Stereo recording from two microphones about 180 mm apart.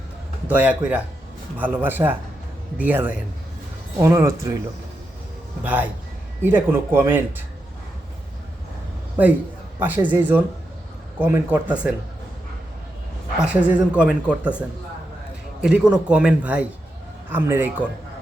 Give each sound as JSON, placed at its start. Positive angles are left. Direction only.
{"t": 0.4, "sound": "a woman's voice", "side_deg": -10}
{"t": 5.6, "sound": "a woman's voice", "side_deg": -10}
{"t": 9.2, "sound": "a woman's voice", "side_deg": -10}
{"t": 13.4, "sound": "a woman's voice", "side_deg": -5}
{"t": 15.6, "sound": "a woman's voice", "side_deg": -5}